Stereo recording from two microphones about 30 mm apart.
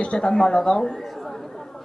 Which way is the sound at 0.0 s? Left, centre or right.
Left.